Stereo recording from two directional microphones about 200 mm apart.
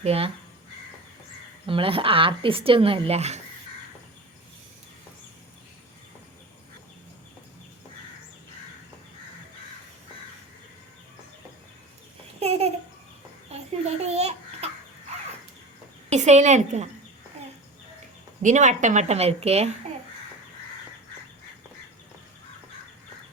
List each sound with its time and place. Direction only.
0.0 s a woman's voice: 30° right (ahead or behind)
1.6 s speech: 25° right (ahead or behind)
12.4 s babbling: 30° right (ahead or behind)
13.5 s a sound: 30° right (ahead or behind)
14.0 s babbling: 30° right (ahead or behind)
16.0 s a woman's voice: 35° right (ahead or behind)
18.4 s a woman's voice: 35° right (ahead or behind)